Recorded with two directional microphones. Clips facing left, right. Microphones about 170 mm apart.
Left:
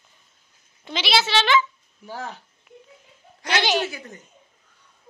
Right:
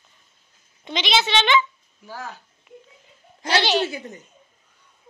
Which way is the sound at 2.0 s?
20° left (ahead or behind).